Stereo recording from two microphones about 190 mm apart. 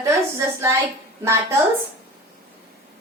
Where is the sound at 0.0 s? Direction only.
15° right (ahead or behind).